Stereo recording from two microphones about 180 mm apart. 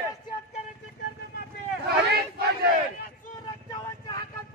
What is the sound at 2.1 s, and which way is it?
Battle cry, 65° right (ahead or behind).